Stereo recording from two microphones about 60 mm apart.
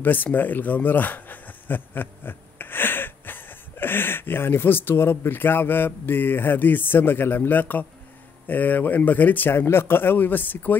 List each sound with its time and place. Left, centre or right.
0.0 s speech: left